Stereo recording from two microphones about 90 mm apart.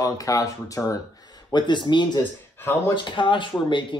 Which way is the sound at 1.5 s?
55° left (ahead or behind).